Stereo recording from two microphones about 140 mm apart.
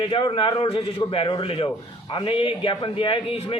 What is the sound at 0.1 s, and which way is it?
A man's voice, 35° left (ahead or behind).